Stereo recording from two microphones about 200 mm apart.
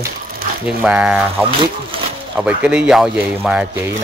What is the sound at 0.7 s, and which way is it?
Speech, 5° right (ahead or behind).